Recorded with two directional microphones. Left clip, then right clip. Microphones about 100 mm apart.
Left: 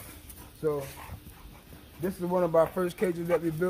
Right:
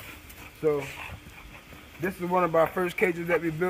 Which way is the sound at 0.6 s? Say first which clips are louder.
Right 4 dB; 20° right (ahead or behind).